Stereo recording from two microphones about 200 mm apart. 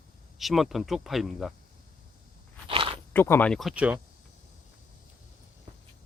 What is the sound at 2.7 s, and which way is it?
Biting, 25° right (ahead or behind).